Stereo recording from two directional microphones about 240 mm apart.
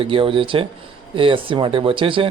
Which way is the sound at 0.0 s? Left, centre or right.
Right.